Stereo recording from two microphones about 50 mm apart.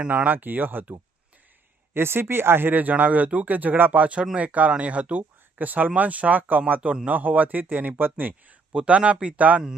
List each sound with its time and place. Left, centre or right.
0.1 s speech: right
1.9 s speech: right
8.7 s speech: right